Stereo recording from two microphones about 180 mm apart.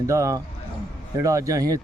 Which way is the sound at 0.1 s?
15° right (ahead or behind).